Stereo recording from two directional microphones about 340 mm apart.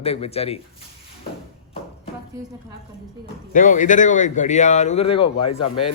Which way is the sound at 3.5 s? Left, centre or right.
Left.